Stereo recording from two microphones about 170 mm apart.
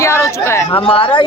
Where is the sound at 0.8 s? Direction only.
30° left (ahead or behind).